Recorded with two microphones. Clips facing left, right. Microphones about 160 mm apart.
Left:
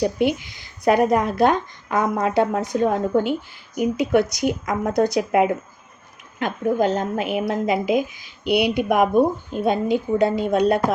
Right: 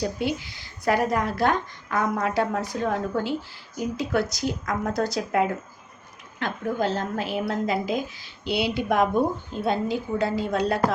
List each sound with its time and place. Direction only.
0.0 s a woman's voice: 20° left (ahead or behind)